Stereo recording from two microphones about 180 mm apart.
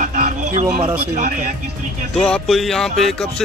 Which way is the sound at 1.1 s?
45° right (ahead or behind).